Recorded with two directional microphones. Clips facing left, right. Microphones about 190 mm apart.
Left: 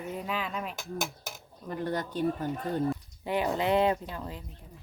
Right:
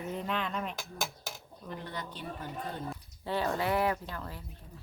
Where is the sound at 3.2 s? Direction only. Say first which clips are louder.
Left 3 dB; 15° left (ahead or behind).